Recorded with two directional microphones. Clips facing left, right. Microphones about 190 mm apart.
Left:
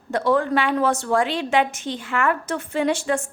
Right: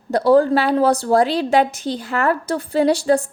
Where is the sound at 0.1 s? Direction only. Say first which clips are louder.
Right 6 dB; 35° right (ahead or behind).